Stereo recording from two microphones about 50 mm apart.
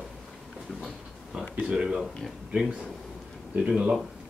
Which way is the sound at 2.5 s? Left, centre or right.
Right.